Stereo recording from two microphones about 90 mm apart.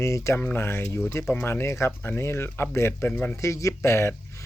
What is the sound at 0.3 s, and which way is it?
Speech, 20° left (ahead or behind).